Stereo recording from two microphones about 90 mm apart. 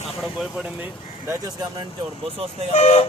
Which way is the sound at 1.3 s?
45° right (ahead or behind).